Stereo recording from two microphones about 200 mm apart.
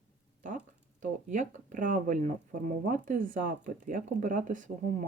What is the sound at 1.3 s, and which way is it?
Speech, 40° right (ahead or behind).